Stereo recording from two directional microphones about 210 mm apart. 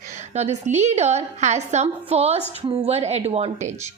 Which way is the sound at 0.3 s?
30° right (ahead or behind).